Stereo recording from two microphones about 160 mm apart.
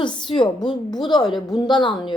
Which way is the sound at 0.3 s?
30° left (ahead or behind).